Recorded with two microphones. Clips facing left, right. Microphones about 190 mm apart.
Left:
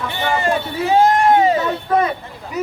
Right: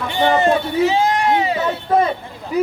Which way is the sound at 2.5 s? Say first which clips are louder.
Right 5 dB; 30° right (ahead or behind).